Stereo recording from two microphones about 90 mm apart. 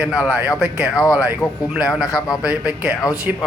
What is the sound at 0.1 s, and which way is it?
Speech, 15° right (ahead or behind).